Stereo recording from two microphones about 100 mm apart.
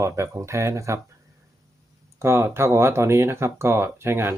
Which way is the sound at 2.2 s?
25° right (ahead or behind).